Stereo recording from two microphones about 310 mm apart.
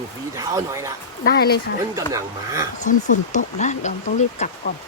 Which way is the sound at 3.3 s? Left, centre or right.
Left.